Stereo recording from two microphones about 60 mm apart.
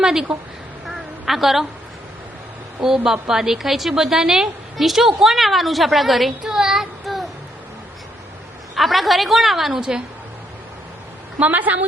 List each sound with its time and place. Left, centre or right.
0.0 s a woman's voice: centre
2.8 s a woman's voice: centre
6.4 s child singing: centre
8.7 s a woman's voice: centre
11.3 s a woman's voice: right